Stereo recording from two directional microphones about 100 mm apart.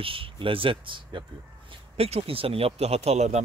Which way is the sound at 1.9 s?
80° right.